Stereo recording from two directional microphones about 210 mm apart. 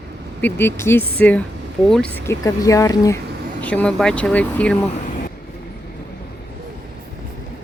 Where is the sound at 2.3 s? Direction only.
15° left (ahead or behind).